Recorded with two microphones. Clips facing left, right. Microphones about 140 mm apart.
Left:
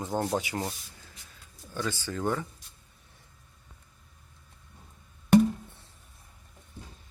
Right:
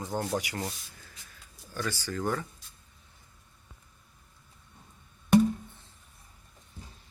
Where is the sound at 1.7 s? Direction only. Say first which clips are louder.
Left 1 dB; 20° left (ahead or behind).